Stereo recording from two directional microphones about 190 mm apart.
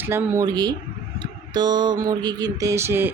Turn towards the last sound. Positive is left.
turn(degrees=-15)  # may be behind; listen again after turning